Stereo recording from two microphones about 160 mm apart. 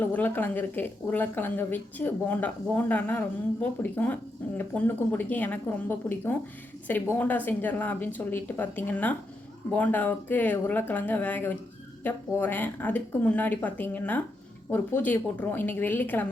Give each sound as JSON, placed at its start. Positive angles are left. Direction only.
{"t": 0.0, "sound": "speech", "side_deg": 10}